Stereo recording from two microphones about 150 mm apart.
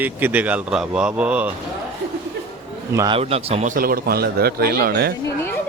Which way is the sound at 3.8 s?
80° right.